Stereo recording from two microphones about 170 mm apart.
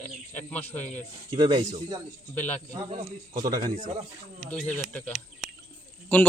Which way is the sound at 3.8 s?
40° right (ahead or behind).